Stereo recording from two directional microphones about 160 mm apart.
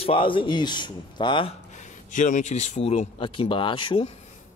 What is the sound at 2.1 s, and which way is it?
Speech, 50° left (ahead or behind).